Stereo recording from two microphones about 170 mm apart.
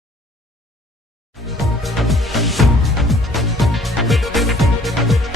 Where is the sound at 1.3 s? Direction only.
Centre (ahead or behind).